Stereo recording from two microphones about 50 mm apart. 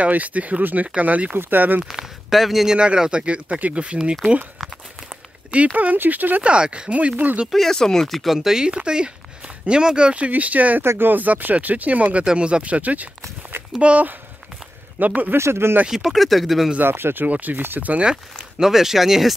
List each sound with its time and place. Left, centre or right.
0.0 s speech: right
2.3 s speech: centre
2.7 s speech: centre
5.5 s speech: right
6.4 s speech: right
7.7 s speech: centre; by 10.8 s right
10.8 s speech: right
15.3 s speech: right
15.9 s speech: centre
16.8 s speech: right
17.3 s speech: right
18.1 s speech: centre